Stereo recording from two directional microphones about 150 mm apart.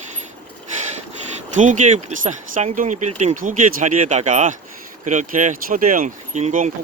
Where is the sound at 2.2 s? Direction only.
55° right (ahead or behind).